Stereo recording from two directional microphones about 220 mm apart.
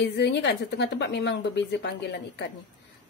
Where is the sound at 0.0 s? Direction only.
50° left (ahead or behind).